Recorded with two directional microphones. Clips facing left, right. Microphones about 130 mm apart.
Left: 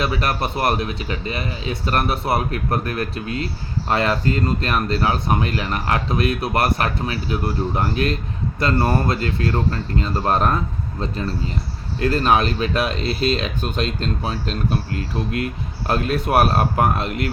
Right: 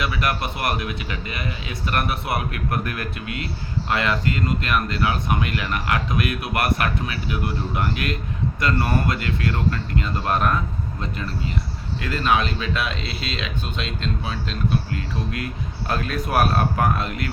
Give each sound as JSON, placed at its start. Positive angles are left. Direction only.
{"t": 0.0, "sound": "speech", "side_deg": 35}
{"t": 15.9, "sound": "speech", "side_deg": 25}